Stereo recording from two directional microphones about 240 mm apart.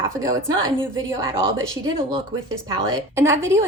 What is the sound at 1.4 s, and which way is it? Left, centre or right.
A woman's voice, right.